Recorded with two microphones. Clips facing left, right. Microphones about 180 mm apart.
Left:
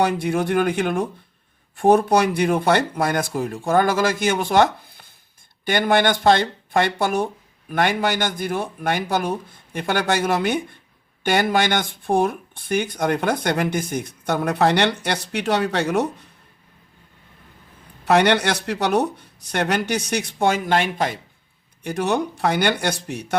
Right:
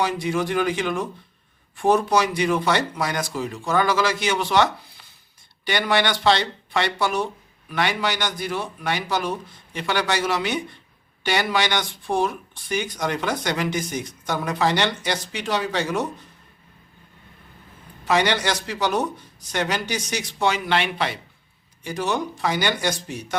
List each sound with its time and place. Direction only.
0.0 s speech: 55° left (ahead or behind)
18.0 s speech: 60° left (ahead or behind)
21.8 s speech: 60° left (ahead or behind)